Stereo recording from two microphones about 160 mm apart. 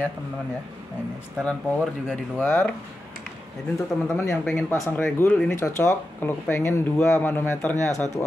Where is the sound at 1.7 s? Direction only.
5° right (ahead or behind).